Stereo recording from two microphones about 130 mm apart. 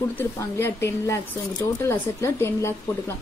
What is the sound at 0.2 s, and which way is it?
Speech, 20° left (ahead or behind).